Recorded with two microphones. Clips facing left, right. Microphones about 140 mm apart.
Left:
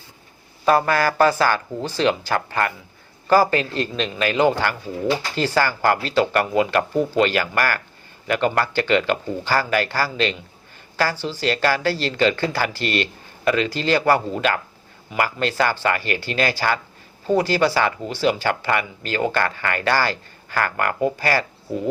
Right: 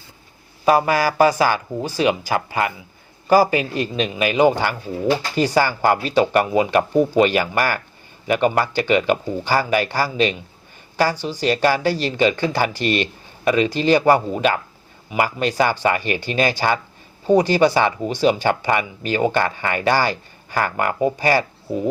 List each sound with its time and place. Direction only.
0.6 s speech: 10° right (ahead or behind)